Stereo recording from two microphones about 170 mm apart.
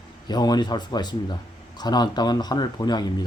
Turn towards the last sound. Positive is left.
turn(degrees=25)  # may be behind; listen again after turning